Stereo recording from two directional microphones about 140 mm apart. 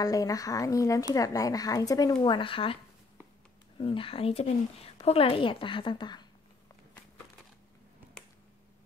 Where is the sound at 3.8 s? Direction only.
40° left (ahead or behind).